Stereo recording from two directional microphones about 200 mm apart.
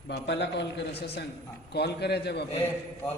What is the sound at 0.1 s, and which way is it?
A man's voice, 55° left (ahead or behind).